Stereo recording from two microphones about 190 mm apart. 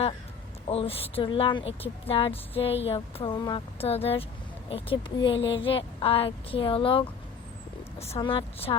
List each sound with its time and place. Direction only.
0.7 s speech: 30° left (ahead or behind)